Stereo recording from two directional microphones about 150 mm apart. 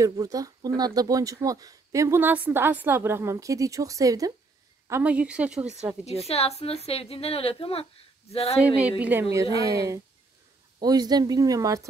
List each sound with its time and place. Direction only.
0.0 s speech: 25° right (ahead or behind)
6.2 s a woman's voice: 45° left (ahead or behind)
9.0 s speech: 10° right (ahead or behind)